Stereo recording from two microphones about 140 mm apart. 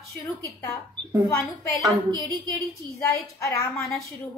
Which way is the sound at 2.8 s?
20° left (ahead or behind).